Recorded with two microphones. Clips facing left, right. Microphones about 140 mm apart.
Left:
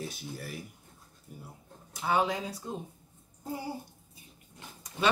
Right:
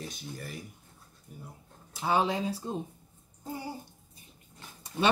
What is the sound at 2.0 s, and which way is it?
Speech, 25° right (ahead or behind).